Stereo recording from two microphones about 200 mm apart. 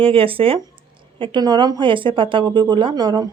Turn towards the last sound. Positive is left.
turn(degrees=-20)  # may be behind; listen again after turning